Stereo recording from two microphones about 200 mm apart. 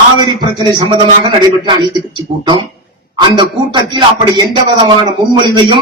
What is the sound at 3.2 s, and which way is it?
Speech, 25° right (ahead or behind).